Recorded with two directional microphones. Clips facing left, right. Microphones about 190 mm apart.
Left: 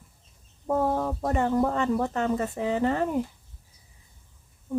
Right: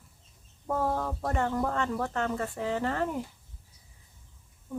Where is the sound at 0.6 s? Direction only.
20° left (ahead or behind).